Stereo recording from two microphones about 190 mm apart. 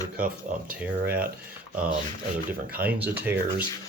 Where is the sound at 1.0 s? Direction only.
50° right (ahead or behind).